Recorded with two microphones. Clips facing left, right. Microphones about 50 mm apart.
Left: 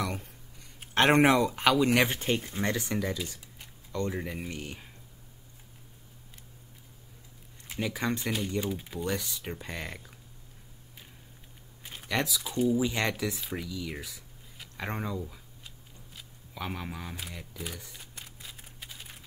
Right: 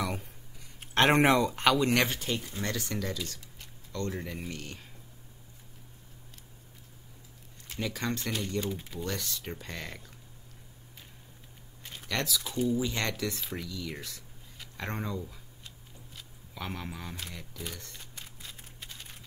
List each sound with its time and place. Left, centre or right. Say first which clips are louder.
0.0 s a sound: even; centre
0.7 s speech: left 1 dB; centre
2.1 s speech: left 4 dB; left; by 4.8 s centre
7.6 s speech: left 2 dB; centre
11.8 s speech: left 3 dB; centre
16.2 s camera: left 2 dB; centre